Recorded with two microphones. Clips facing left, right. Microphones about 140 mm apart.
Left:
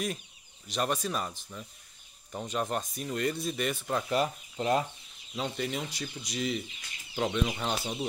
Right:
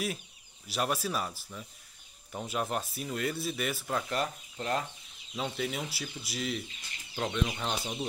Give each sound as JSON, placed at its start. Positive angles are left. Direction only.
{"t": 0.7, "sound": "speech", "side_deg": -5}
{"t": 4.6, "sound": "chicken", "side_deg": 15}
{"t": 5.3, "sound": "speech", "side_deg": 0}